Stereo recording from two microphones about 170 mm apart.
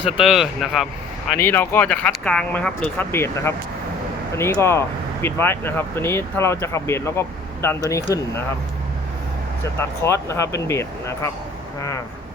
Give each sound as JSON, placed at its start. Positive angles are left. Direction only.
{"t": 0.0, "sound": "speech", "side_deg": 0}
{"t": 1.4, "sound": "speech", "side_deg": 15}
{"t": 10.0, "sound": "speech", "side_deg": 15}